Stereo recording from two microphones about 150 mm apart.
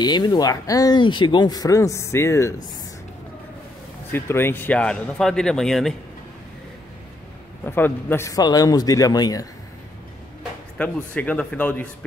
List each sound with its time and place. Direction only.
0.0 s speech: 30° left (ahead or behind)
4.1 s speech: 15° left (ahead or behind)
7.6 s speech: 15° left (ahead or behind)
10.8 s speech: 10° left (ahead or behind)